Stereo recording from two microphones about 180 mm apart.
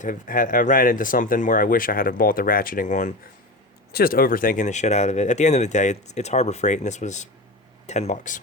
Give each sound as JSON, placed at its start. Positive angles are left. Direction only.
{"t": 0.0, "sound": "speech", "side_deg": 50}
{"t": 3.9, "sound": "speech", "side_deg": 55}